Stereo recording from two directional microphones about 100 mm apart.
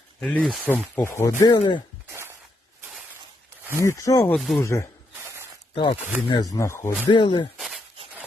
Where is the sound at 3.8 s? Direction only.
30° left (ahead or behind).